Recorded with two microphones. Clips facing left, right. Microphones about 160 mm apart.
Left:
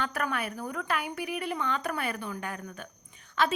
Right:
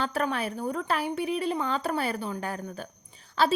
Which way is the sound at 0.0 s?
30° right (ahead or behind).